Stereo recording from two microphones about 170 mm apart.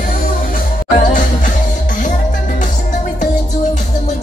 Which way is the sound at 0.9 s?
50° left (ahead or behind).